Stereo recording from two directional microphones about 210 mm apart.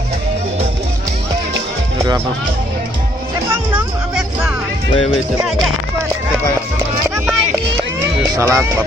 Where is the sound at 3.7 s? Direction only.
5° right (ahead or behind).